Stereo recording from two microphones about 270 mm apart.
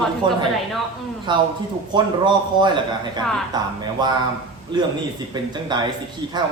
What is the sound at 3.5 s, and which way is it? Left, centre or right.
Speech, centre.